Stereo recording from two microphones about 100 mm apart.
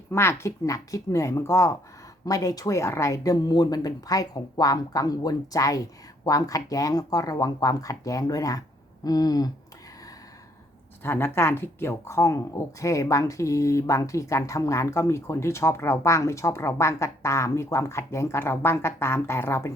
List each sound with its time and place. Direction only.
0.1 s speech: 25° left (ahead or behind)
11.0 s speech: 25° left (ahead or behind)